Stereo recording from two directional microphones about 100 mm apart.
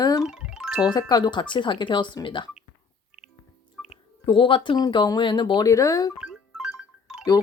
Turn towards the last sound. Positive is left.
turn(degrees=-5)  # may be behind; listen again after turning